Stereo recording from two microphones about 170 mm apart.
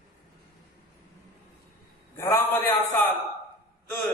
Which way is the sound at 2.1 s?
15° left (ahead or behind).